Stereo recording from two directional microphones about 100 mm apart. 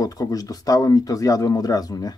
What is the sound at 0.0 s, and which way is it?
Speech, 35° left (ahead or behind).